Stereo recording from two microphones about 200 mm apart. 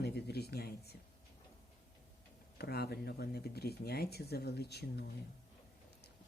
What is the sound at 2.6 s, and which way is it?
Speech, 50° left (ahead or behind).